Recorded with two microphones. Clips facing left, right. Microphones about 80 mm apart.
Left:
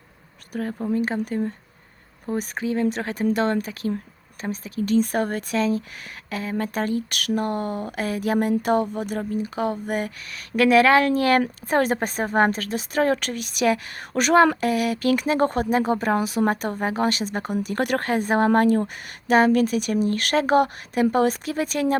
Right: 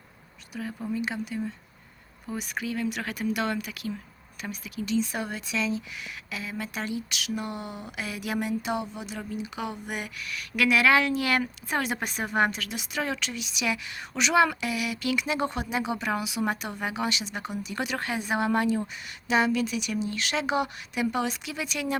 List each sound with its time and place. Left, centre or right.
0.5 s a woman's voice: left